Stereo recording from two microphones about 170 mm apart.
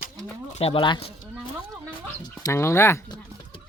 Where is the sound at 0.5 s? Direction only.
35° left (ahead or behind).